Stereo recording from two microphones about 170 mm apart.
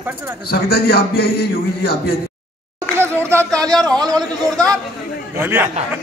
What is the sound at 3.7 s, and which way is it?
A man's voice, 5° left (ahead or behind).